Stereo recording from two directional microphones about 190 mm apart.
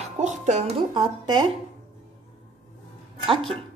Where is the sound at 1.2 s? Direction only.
25° right (ahead or behind).